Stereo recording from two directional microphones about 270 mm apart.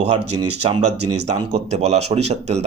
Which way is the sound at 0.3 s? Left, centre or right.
Right.